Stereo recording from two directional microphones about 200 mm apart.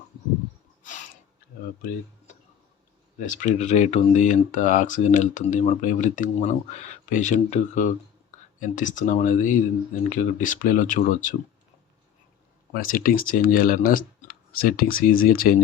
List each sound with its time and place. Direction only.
3.2 s speech: 40° left (ahead or behind)
12.7 s speech: 45° left (ahead or behind)